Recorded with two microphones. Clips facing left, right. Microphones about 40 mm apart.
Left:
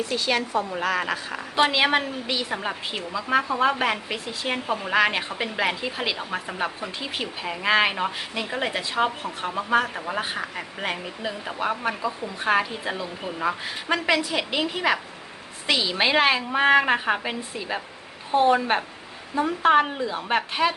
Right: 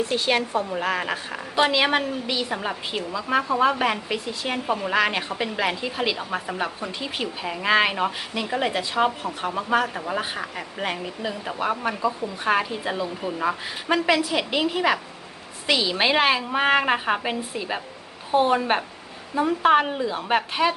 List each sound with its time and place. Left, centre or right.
0.0 s a woman's voice: right
1.5 s a woman's voice: centre